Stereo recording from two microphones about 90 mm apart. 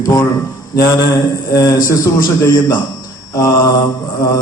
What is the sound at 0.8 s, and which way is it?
A man's voice, 40° left (ahead or behind).